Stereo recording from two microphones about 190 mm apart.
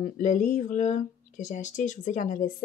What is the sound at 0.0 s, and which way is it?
Speech, 40° left (ahead or behind).